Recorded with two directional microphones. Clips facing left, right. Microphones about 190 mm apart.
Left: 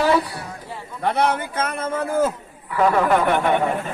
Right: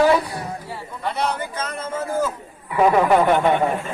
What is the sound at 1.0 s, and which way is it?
A man's voice, 55° left (ahead or behind).